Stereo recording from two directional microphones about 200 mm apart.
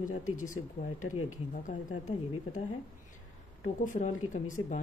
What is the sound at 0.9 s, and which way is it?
Speech, 90° left.